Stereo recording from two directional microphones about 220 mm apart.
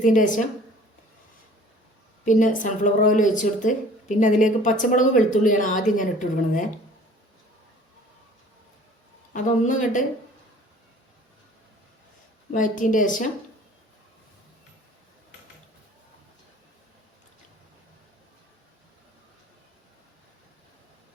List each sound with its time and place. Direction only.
0.0 s a woman's voice: 35° left (ahead or behind)
2.2 s a woman's voice: 35° left (ahead or behind)
9.3 s a woman's voice: 35° left (ahead or behind)
12.5 s a woman's voice: 35° left (ahead or behind)